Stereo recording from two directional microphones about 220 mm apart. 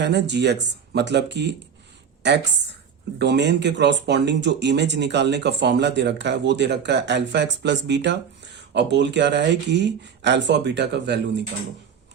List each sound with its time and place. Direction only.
0.0 s speech: 50° right (ahead or behind)